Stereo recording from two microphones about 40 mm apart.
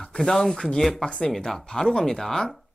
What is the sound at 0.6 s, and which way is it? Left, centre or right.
Speech, left.